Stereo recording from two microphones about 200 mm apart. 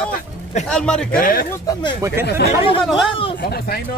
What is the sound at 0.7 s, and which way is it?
Speech, 5° left (ahead or behind).